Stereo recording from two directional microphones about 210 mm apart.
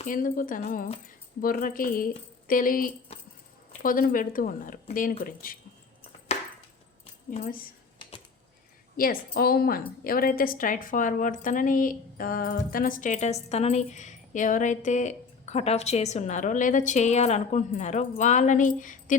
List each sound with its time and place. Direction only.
0.0 s a woman's voice: 40° left (ahead or behind)
3.1 s dog: 30° left (ahead or behind)
3.7 s a woman's voice: 40° left (ahead or behind)
7.3 s speech: 40° left (ahead or behind)
9.0 s a woman's voice: 45° left (ahead or behind)